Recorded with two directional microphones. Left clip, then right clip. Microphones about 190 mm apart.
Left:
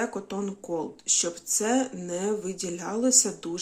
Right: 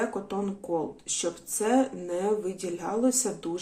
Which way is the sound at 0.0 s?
25° left (ahead or behind).